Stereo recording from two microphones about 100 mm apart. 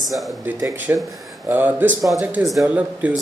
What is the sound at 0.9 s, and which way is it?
Speech, 25° right (ahead or behind).